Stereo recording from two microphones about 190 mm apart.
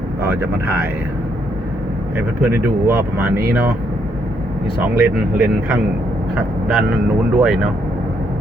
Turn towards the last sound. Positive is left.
turn(degrees=-5)  # may be behind; listen again after turning